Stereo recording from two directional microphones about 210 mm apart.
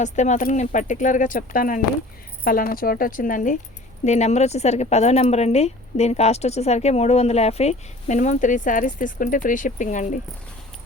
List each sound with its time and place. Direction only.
0.0 s speech: 35° left (ahead or behind)